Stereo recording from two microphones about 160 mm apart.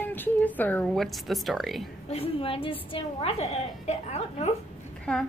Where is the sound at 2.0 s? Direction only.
40° left (ahead or behind).